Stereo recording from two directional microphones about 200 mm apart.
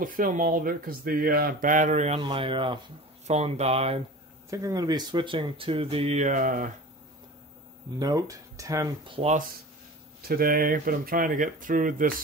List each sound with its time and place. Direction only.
0.0 s speech: 45° right (ahead or behind)
4.5 s speech: 15° right (ahead or behind); by 6.7 s 40° right (ahead or behind)
8.0 s speech: 20° right (ahead or behind)
10.2 s speech: 45° right (ahead or behind)